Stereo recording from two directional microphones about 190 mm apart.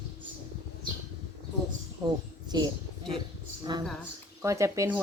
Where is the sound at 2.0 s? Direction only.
25° right (ahead or behind).